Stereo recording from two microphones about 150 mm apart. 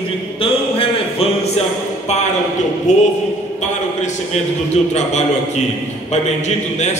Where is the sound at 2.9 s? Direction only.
55° left (ahead or behind).